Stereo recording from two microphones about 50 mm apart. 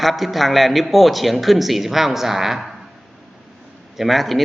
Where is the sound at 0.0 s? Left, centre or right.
Centre.